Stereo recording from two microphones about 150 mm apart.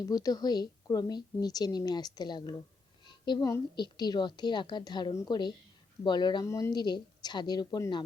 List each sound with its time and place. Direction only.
0.0 s a woman's voice: 25° left (ahead or behind)